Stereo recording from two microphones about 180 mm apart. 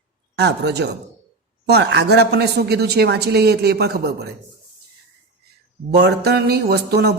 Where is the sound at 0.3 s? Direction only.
70° right (ahead or behind).